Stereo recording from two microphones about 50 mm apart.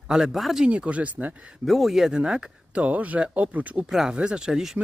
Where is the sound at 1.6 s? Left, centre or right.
Centre.